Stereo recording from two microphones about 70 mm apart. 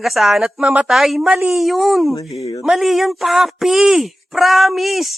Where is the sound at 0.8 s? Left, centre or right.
Centre.